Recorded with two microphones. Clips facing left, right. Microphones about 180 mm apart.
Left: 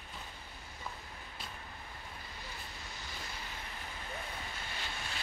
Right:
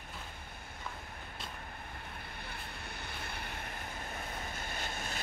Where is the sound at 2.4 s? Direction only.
60° right (ahead or behind).